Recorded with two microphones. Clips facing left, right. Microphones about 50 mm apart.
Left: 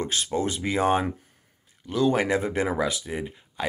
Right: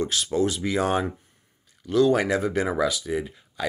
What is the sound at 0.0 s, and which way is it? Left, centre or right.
Speech, left.